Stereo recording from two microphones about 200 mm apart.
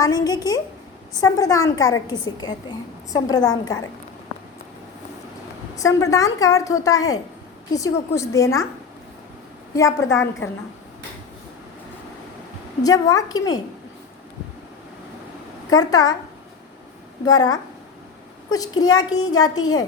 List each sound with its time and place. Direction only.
0.0 s a woman's voice: 20° left (ahead or behind)
5.7 s a woman's voice: 15° left (ahead or behind)
9.7 s a woman's voice: 15° left (ahead or behind)
12.8 s a woman's voice: 20° left (ahead or behind)
15.7 s a woman's voice: 20° left (ahead or behind)
17.2 s a woman's voice: 20° left (ahead or behind)
18.8 s a woman's voice: 20° left (ahead or behind)